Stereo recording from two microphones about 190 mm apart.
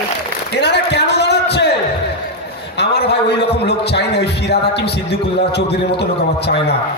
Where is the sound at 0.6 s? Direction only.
60° left (ahead or behind).